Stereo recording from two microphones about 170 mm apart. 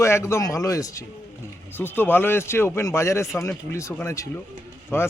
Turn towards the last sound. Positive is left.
turn(degrees=15)  # may be behind; listen again after turning